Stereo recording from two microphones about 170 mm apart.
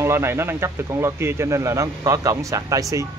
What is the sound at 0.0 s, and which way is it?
Speech, 15° right (ahead or behind).